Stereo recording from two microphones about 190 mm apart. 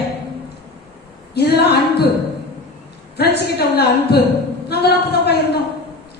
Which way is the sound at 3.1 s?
60° left (ahead or behind).